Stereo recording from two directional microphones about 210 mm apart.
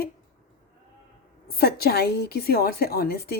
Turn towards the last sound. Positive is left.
turn(degrees=50)  # may be behind; listen again after turning